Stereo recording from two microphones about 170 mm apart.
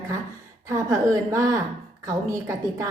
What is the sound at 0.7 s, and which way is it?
A woman's voice, 15° right (ahead or behind).